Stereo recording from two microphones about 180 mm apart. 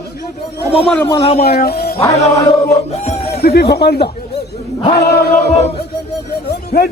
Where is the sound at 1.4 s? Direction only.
60° left (ahead or behind).